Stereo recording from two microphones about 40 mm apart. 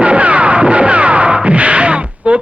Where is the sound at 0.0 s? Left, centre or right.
Right.